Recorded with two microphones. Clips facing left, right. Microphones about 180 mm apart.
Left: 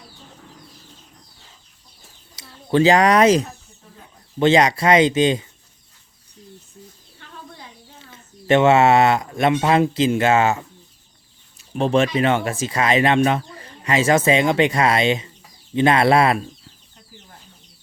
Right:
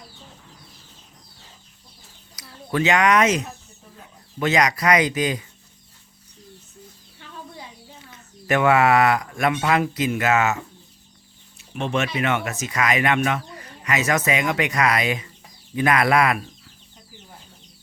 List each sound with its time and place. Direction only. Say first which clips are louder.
2.3 s speech: left 6 dB; 25° left (ahead or behind)
8.1 s speech: left 6 dB; 25° left (ahead or behind)
11.7 s speech: left 6 dB; 30° left (ahead or behind)